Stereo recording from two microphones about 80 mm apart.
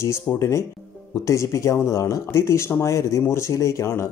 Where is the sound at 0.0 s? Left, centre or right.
Left.